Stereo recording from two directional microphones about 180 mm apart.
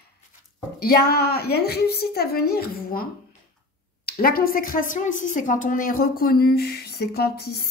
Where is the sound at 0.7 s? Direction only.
60° left (ahead or behind).